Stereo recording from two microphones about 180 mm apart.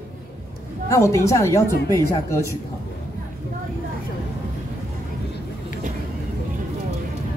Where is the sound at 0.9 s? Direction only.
15° left (ahead or behind).